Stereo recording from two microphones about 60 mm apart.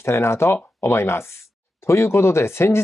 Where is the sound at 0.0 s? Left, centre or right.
Left.